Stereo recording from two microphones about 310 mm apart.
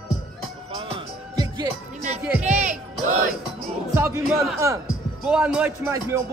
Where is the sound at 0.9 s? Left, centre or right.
Centre.